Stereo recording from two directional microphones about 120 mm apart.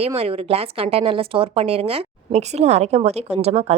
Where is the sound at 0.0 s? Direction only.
55° right (ahead or behind).